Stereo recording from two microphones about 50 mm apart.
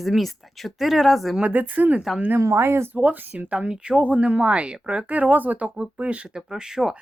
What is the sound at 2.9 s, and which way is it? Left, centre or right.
Speech, right.